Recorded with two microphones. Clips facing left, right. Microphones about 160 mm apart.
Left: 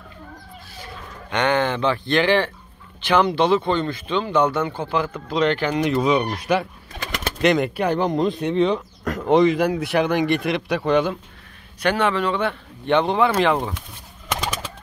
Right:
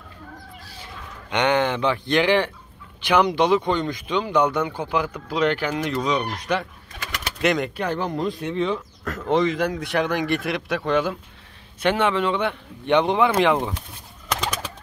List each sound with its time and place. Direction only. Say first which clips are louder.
1.3 s speech: even; 20° right (ahead or behind)
5.9 s a man's voice: left 6 dB; 5° left (ahead or behind)
11.8 s speech: even; 20° right (ahead or behind)